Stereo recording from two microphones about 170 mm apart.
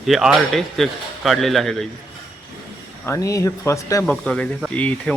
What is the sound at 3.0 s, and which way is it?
Speech, 15° left (ahead or behind).